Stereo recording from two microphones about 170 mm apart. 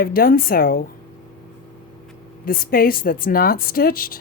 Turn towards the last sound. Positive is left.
turn(degrees=60)  # may be behind; listen again after turning